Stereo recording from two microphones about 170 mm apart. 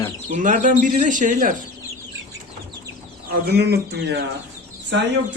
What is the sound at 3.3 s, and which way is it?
Speech, 70° right (ahead or behind).